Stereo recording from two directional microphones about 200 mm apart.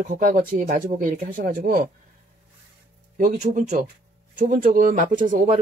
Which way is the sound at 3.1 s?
40° right (ahead or behind).